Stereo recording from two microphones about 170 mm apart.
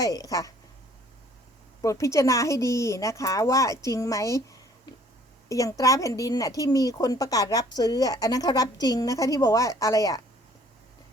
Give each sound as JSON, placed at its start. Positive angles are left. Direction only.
{"t": 0.0, "sound": "a woman's voice", "side_deg": 20}
{"t": 1.8, "sound": "a woman's voice", "side_deg": 20}